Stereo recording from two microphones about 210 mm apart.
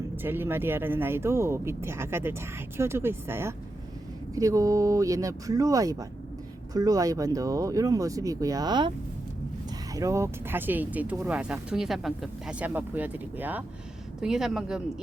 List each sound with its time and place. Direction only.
0.2 s speech: 10° right (ahead or behind)
9.9 s speech: 15° right (ahead or behind)